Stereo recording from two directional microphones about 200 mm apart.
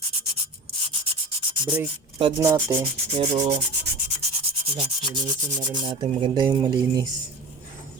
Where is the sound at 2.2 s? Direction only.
20° right (ahead or behind).